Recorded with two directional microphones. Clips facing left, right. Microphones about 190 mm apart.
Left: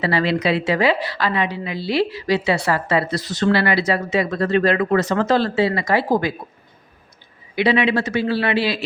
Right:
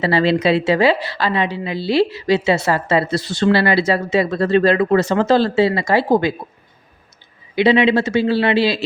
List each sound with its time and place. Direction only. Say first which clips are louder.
0.0 s a woman's voice: right 4 dB; 30° right (ahead or behind)
7.5 s a woman's voice: right 4 dB; 25° right (ahead or behind)